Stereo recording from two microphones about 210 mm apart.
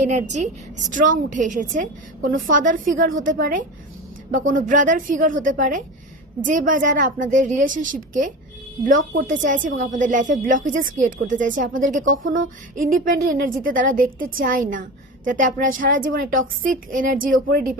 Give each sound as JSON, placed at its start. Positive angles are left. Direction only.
{"t": 0.0, "sound": "a woman's voice", "side_deg": -35}